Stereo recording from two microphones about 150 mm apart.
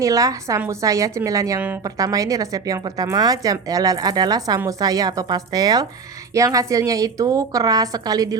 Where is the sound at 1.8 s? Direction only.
25° right (ahead or behind).